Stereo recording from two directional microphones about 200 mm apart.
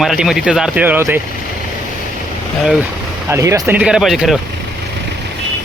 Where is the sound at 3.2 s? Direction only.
15° right (ahead or behind).